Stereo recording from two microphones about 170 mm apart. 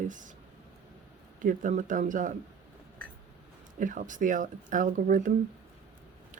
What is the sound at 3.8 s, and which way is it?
Speech, 50° right (ahead or behind).